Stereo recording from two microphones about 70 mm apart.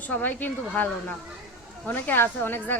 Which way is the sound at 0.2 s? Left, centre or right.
Left.